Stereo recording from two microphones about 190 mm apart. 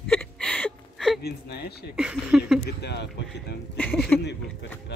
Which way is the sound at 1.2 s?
60° left (ahead or behind).